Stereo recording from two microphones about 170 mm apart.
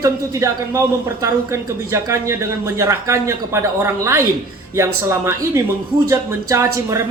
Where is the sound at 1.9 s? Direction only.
15° right (ahead or behind).